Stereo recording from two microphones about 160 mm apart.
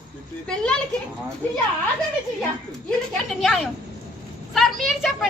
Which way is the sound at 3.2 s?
Centre (ahead or behind).